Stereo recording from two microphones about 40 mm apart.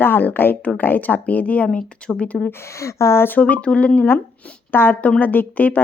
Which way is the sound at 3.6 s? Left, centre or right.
Left.